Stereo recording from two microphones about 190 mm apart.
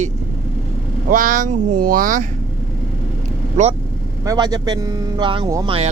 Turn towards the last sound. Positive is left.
turn(degrees=-20)  # may be behind; listen again after turning